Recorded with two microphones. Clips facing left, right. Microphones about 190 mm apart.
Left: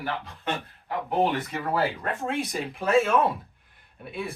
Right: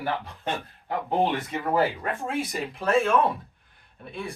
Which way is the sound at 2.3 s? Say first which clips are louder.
Left 1 dB; 5° right (ahead or behind).